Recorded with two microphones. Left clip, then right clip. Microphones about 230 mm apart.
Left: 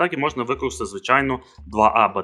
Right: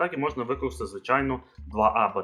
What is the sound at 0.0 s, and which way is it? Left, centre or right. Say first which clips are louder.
Speech: left 6 dB; left.